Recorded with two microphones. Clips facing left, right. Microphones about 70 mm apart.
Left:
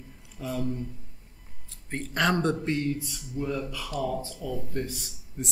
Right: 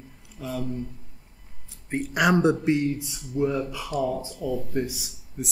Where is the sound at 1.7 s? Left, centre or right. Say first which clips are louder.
Right 6 dB; centre.